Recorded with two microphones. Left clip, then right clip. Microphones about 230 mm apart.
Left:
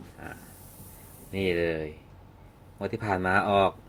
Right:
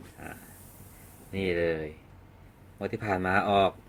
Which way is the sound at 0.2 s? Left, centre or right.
Centre.